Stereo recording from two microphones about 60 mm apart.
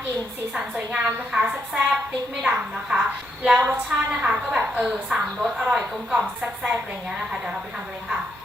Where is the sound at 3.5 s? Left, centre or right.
Right; by 8.2 s centre.